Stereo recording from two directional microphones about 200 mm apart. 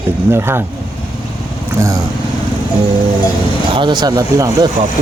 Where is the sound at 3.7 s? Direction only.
20° right (ahead or behind).